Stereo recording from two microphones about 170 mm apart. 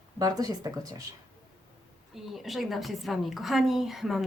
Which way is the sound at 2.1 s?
Centre (ahead or behind).